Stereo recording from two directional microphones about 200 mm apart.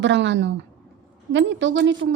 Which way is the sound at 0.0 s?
65° right (ahead or behind).